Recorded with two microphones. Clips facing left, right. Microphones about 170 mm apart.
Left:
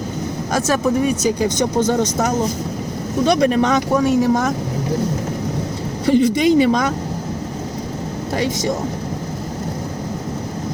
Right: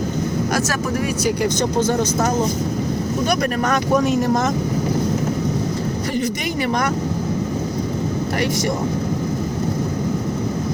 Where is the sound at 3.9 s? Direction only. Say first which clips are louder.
Left 2 dB; 10° left (ahead or behind).